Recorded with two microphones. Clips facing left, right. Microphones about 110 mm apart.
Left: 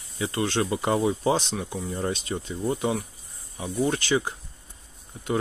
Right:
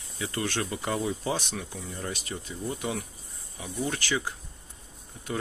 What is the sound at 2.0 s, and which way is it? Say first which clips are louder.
Speech: left 7 dB; 30° left (ahead or behind).